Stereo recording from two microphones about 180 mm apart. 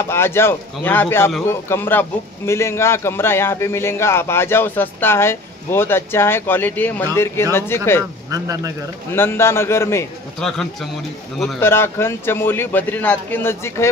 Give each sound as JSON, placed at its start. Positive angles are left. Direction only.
{"t": 0.1, "sound": "a man's voice", "side_deg": 15}
{"t": 8.3, "sound": "speech", "side_deg": -20}
{"t": 9.1, "sound": "a man's voice", "side_deg": 15}
{"t": 10.4, "sound": "speech", "side_deg": 0}
{"t": 11.6, "sound": "a man's voice", "side_deg": 15}